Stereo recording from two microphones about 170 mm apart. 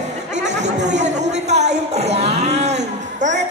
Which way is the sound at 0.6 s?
45° right (ahead or behind).